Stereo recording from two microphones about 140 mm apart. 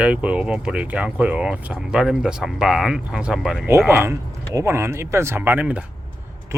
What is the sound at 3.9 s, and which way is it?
Speech, 15° right (ahead or behind).